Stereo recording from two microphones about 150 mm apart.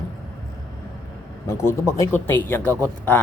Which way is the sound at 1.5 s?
20° left (ahead or behind).